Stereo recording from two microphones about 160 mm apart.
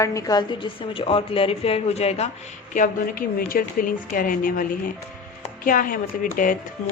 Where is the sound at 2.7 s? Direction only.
60° left (ahead or behind).